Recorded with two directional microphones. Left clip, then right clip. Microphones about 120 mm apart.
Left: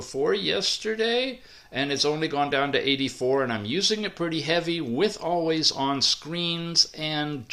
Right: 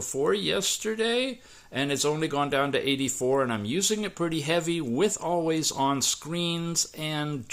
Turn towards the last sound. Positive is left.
turn(degrees=-40)  # may be behind; listen again after turning